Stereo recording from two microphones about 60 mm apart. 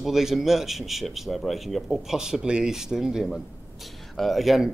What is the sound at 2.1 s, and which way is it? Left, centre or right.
Speech, centre.